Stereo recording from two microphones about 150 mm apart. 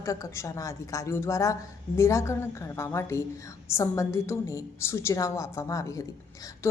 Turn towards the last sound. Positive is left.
turn(degrees=20)  # may be behind; listen again after turning